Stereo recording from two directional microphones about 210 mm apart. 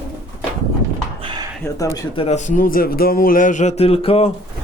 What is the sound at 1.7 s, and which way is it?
Speech, 15° left (ahead or behind).